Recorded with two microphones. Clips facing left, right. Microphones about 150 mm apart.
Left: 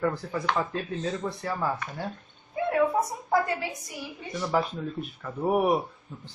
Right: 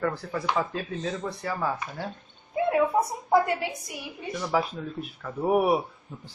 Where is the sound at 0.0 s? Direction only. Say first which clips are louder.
Left 1 dB; centre (ahead or behind).